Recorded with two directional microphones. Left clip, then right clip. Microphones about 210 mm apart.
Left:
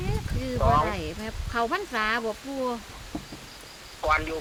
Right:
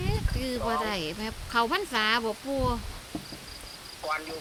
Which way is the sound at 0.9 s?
20° right (ahead or behind).